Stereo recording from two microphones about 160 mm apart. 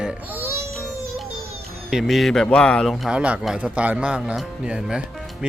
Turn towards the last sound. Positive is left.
turn(degrees=-5)  # may be behind; listen again after turning